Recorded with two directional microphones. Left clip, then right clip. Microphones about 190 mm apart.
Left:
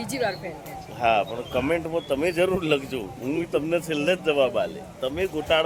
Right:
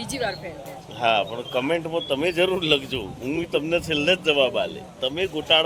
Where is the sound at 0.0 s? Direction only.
20° left (ahead or behind).